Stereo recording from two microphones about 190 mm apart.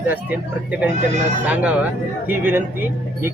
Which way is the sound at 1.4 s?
5° right (ahead or behind).